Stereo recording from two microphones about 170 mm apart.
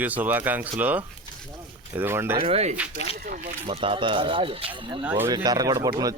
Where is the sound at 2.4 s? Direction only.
35° right (ahead or behind).